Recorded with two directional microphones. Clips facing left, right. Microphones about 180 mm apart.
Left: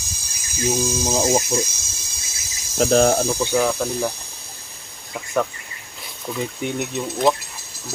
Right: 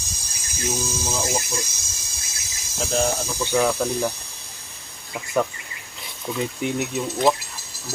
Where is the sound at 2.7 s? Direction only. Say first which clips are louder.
Left 8 dB; 70° left (ahead or behind).